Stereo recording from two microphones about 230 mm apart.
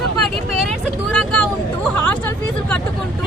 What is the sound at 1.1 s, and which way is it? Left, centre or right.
Speech, centre.